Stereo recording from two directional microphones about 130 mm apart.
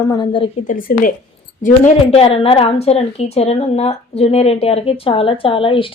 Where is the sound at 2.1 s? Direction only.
50° left (ahead or behind).